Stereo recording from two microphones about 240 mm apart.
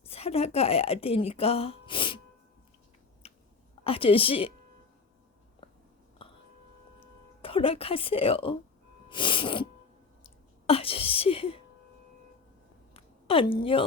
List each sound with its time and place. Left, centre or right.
0.0 s speech: left
3.8 s speech: left
7.4 s speech: left
9.0 s sneeze: centre
10.2 s whispering: left
12.9 s a sound: left